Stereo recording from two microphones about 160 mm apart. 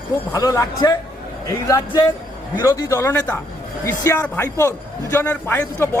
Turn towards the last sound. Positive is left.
turn(degrees=15)  # may be behind; listen again after turning